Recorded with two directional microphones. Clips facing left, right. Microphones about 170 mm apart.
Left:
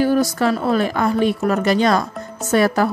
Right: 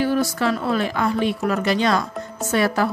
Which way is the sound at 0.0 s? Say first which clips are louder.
Left 4 dB; 45° left (ahead or behind).